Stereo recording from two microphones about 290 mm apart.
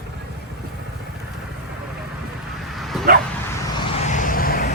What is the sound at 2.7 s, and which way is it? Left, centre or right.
Bow-wow, centre.